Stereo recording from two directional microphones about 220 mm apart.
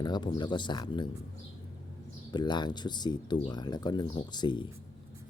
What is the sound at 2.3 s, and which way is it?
Speech, 20° left (ahead or behind).